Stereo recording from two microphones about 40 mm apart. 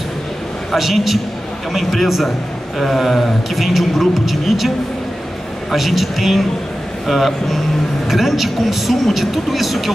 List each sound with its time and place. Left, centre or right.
0.7 s a man's voice: centre